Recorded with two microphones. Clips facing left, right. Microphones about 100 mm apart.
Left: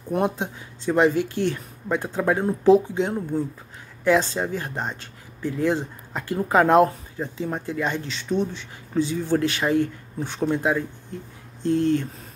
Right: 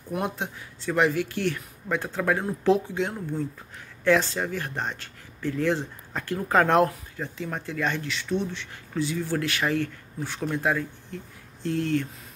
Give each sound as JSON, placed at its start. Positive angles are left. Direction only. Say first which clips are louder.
{"t": 0.1, "sound": "speech", "louder": "left 6 dB", "side_deg": 20}